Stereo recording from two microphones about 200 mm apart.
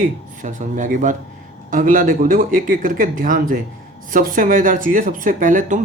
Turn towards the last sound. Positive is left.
turn(degrees=-40)  # may be behind; listen again after turning